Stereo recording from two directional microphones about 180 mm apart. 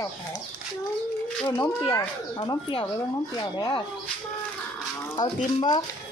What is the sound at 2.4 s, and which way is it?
Speech, 30° left (ahead or behind).